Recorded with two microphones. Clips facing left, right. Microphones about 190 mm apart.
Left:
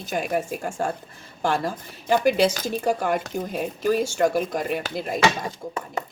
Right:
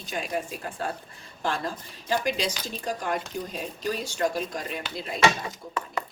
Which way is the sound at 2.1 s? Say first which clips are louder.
Left 8 dB; 55° left (ahead or behind).